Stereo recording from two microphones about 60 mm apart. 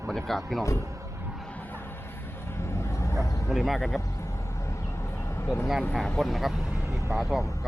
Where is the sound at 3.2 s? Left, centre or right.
Left.